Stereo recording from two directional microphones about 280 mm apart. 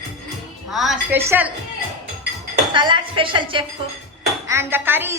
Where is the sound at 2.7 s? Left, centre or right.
Centre.